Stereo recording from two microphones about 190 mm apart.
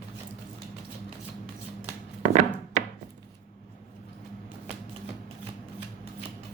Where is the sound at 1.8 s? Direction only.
40° right (ahead or behind).